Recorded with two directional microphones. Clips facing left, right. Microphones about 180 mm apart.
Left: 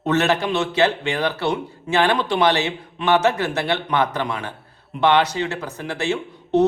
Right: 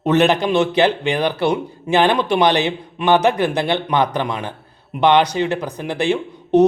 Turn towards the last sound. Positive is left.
turn(degrees=-15)  # may be behind; listen again after turning